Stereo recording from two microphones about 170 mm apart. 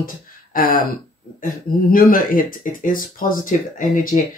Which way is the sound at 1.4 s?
55° left (ahead or behind).